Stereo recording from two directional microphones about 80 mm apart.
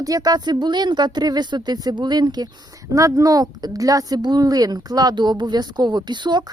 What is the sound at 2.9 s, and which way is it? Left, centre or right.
A woman's voice, right.